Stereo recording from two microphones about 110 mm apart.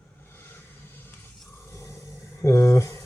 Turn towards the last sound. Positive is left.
turn(degrees=30)  # may be behind; listen again after turning